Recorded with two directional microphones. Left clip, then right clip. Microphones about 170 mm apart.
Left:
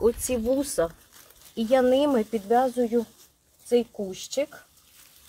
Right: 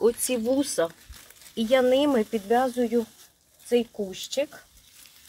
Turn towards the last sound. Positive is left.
turn(degrees=-10)  # may be behind; listen again after turning